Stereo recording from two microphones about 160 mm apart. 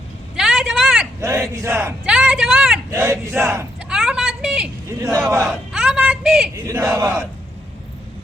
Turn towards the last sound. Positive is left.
turn(degrees=-15)  # may be behind; listen again after turning